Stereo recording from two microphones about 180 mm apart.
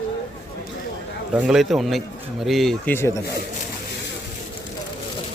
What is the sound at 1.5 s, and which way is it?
Speech, centre (ahead or behind).